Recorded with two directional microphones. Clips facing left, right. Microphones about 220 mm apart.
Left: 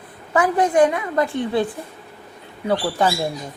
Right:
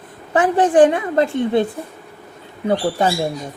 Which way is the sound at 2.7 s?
25° right (ahead or behind).